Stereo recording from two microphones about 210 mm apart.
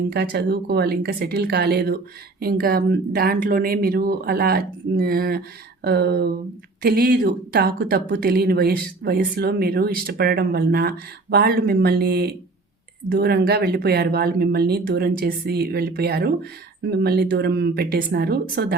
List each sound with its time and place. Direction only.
0.1 s speech: 50° right (ahead or behind)